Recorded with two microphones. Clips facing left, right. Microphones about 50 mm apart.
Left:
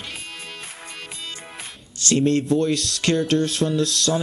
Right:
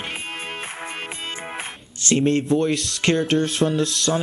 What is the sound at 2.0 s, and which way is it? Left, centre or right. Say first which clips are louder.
Speech: even; right.